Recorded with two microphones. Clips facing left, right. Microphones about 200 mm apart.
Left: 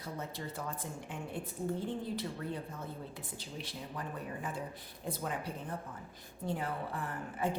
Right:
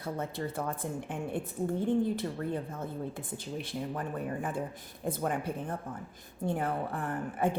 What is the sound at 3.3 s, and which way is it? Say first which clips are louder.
A woman's voice: right 8 dB; 50° right (ahead or behind).